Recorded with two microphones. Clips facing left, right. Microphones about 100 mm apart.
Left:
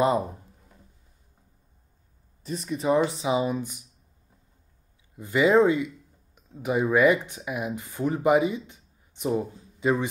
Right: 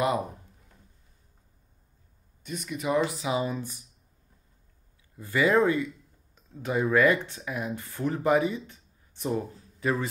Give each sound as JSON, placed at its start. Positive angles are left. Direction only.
{"t": 0.2, "sound": "a sound", "side_deg": 0}
{"t": 2.4, "sound": "speech", "side_deg": 35}
{"t": 3.3, "sound": "speech", "side_deg": 15}
{"t": 5.1, "sound": "speech", "side_deg": 15}